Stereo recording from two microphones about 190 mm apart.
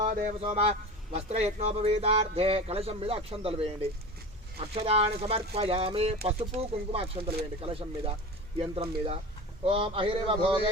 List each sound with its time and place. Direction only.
0.0 s a man's voice: 40° right (ahead or behind)
4.7 s a man's voice: 30° right (ahead or behind)